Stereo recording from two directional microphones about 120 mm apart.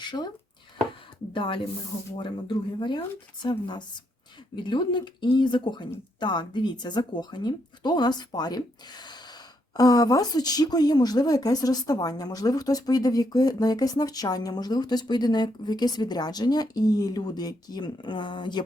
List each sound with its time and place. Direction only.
0.0 s speech: 35° left (ahead or behind)
1.3 s a woman's voice: 45° left (ahead or behind)